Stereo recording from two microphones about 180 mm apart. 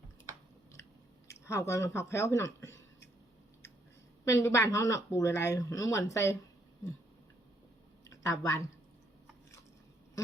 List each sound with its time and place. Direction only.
1.3 s speech: 15° left (ahead or behind)
4.3 s speech: 15° left (ahead or behind)
8.0 s a sound: 15° left (ahead or behind)